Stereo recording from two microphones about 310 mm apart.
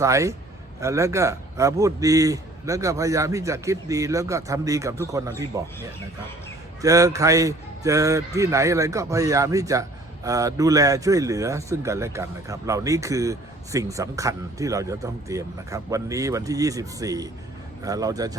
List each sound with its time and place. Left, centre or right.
0.0 s speech: centre
6.8 s speech: centre